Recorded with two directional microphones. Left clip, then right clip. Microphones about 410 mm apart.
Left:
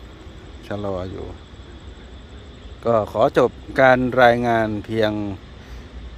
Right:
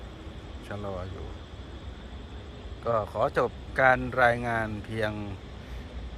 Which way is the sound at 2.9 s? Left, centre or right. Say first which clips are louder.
Left 9 dB; centre.